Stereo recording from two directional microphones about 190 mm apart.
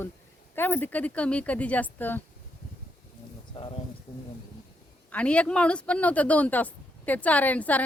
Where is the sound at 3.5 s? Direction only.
30° left (ahead or behind).